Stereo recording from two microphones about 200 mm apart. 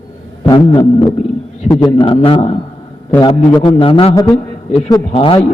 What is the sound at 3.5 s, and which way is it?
A man's voice, 25° left (ahead or behind).